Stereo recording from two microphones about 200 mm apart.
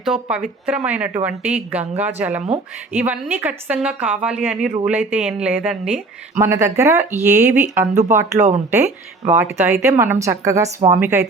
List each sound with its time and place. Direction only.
0.0 s speech: 5° right (ahead or behind)
8.4 s speech: 35° right (ahead or behind)
9.3 s speech: 10° right (ahead or behind)